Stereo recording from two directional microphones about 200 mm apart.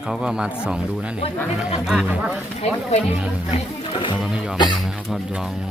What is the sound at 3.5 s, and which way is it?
Speech, 30° left (ahead or behind).